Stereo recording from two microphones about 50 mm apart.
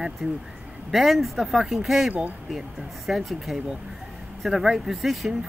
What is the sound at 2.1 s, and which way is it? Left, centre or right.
Speech, right.